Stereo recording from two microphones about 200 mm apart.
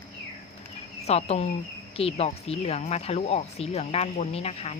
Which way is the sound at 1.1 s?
30° left (ahead or behind).